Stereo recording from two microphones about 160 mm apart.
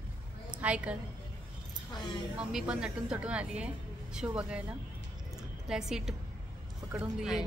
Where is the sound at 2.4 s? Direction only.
5° right (ahead or behind).